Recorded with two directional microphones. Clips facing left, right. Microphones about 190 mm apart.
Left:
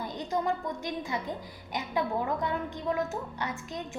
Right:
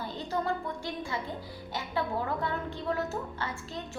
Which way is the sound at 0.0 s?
15° left (ahead or behind).